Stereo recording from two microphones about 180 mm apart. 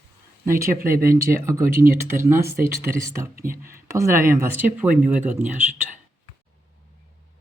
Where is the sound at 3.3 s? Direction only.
55° right (ahead or behind).